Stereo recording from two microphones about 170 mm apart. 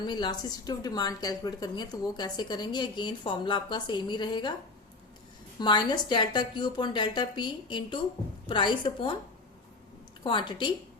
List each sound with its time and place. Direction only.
0.0 s a woman's voice: 25° left (ahead or behind)
5.5 s a woman's voice: 25° left (ahead or behind)
10.2 s a woman's voice: 25° left (ahead or behind)